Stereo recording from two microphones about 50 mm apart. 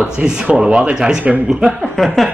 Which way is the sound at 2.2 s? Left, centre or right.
Centre.